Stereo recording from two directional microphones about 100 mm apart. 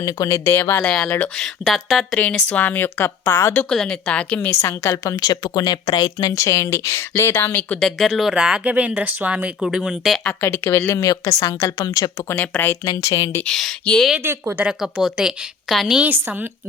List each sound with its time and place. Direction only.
0.0 s speech: 35° left (ahead or behind); by 2.1 s centre (ahead or behind)
2.5 s speech: 15° left (ahead or behind)
3.7 s a woman's voice: 5° left (ahead or behind)
4.6 s a woman's voice: 25° left (ahead or behind)
7.8 s speech: centre (ahead or behind); by 9.5 s 15° right (ahead or behind)
9.6 s speech: 5° right (ahead or behind)
10.4 s a woman's voice: 20° left (ahead or behind); by 12.1 s 40° left (ahead or behind)
12.3 s speech: 20° left (ahead or behind)
13.1 s a woman's voice: 30° left (ahead or behind)
13.4 s speech: 5° left (ahead or behind)
14.6 s speech: 5° right (ahead or behind)
16.0 s speech: 20° right (ahead or behind)